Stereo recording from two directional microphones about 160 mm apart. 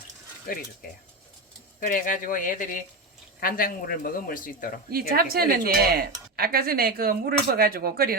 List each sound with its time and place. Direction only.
0.5 s speech: 60° left (ahead or behind)
1.8 s speech: 55° left (ahead or behind)
4.9 s speech: 70° right (ahead or behind)